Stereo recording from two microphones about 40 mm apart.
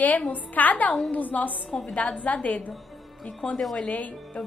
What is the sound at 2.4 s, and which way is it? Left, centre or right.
Speech, left.